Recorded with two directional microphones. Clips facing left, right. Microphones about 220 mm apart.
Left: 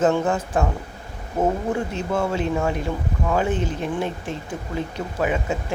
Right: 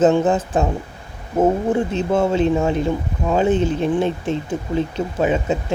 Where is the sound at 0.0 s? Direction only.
20° right (ahead or behind).